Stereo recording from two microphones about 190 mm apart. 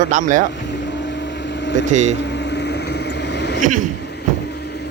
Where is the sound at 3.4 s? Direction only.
60° left (ahead or behind).